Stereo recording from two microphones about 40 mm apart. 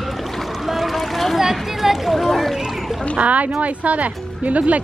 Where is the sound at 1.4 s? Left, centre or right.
Centre.